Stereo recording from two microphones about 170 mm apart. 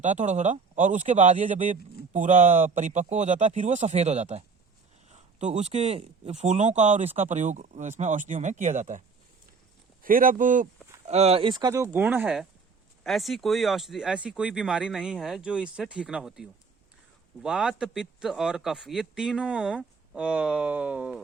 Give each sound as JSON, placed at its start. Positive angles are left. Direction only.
{"t": 0.0, "sound": "a man's voice", "side_deg": -45}